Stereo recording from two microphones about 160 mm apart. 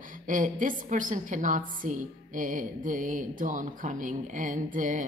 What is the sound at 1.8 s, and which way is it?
Music, 55° right (ahead or behind).